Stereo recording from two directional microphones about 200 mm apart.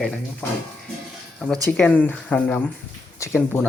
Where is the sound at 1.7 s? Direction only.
5° left (ahead or behind).